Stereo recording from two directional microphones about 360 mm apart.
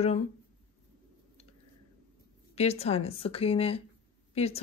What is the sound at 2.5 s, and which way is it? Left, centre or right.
Speech, centre.